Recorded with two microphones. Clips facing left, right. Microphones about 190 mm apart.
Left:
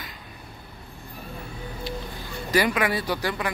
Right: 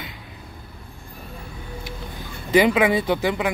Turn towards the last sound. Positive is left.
turn(degrees=-20)  # may be behind; listen again after turning